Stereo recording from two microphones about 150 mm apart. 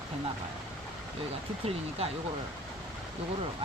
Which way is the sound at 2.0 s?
40° right (ahead or behind).